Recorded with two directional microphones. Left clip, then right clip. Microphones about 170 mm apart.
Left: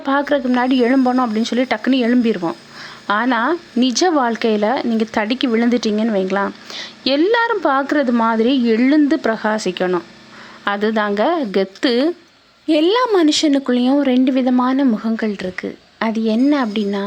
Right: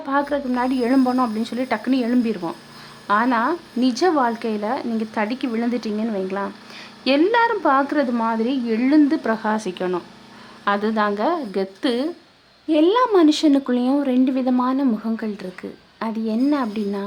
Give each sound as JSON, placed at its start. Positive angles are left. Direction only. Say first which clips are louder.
{"t": 0.0, "sound": "speech", "louder": "left 5 dB", "side_deg": 20}